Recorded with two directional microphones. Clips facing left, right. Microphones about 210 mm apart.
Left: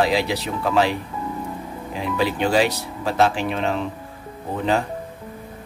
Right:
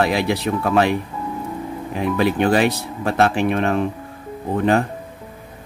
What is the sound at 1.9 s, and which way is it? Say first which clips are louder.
Speech: right 4 dB; 55° right (ahead or behind).